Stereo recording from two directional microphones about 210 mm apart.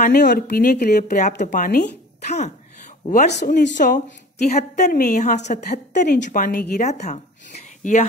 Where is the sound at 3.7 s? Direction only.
35° left (ahead or behind).